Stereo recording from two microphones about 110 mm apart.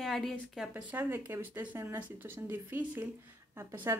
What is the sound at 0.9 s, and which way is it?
Speech, 20° right (ahead or behind).